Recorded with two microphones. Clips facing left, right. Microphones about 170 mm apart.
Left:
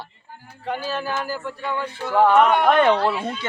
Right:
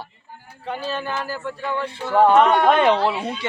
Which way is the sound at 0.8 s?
Centre (ahead or behind).